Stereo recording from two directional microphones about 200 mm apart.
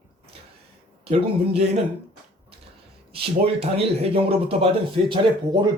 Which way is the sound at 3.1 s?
30° right (ahead or behind).